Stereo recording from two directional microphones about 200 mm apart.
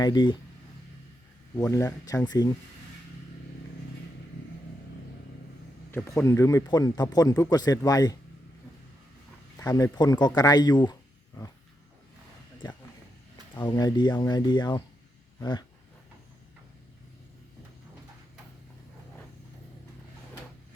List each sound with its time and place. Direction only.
0.0 s speech: 20° left (ahead or behind)
1.5 s speech: 15° left (ahead or behind)
5.9 s speech: 10° left (ahead or behind)
9.6 s speech: 15° left (ahead or behind)
12.6 s speech: 20° left (ahead or behind)
15.4 s dog: 20° left (ahead or behind)